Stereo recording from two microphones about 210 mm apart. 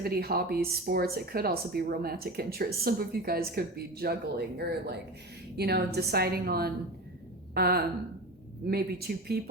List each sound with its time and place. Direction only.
0.0 s speech: 45° right (ahead or behind)